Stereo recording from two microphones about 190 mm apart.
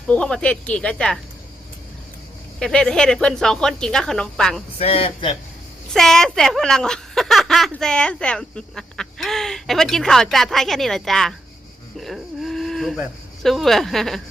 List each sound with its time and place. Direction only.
0.1 s speech: 5° left (ahead or behind)
2.6 s speech: 5° left (ahead or behind)
4.8 s a man's voice: 30° left (ahead or behind)
5.9 s speech: centre (ahead or behind)
11.9 s a sound: centre (ahead or behind)
13.4 s speech: centre (ahead or behind)